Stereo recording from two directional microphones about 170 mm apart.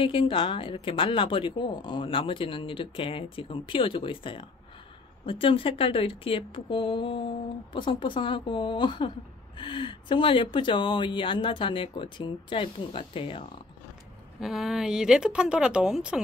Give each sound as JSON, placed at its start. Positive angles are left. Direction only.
{"t": 0.0, "sound": "speech", "side_deg": 30}
{"t": 14.4, "sound": "speech", "side_deg": 0}